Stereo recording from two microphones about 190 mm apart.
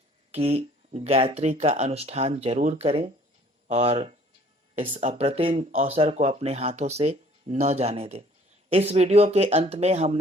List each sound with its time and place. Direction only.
0.3 s speech: 35° right (ahead or behind)